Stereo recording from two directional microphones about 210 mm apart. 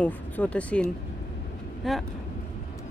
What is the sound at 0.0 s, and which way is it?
Speech, 5° left (ahead or behind).